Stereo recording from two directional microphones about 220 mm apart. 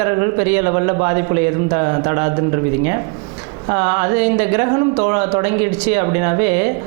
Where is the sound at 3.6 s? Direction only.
20° right (ahead or behind).